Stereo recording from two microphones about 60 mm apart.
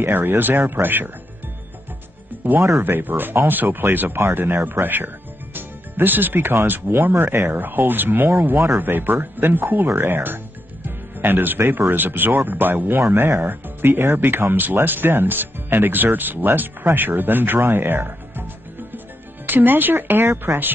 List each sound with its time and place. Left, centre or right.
0.0 s speech: right
2.8 s speech: right